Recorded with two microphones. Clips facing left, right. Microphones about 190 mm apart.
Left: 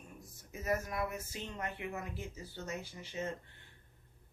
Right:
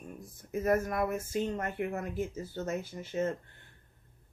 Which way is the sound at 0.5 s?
55° right (ahead or behind).